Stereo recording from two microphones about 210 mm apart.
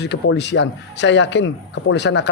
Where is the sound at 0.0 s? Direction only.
55° left (ahead or behind).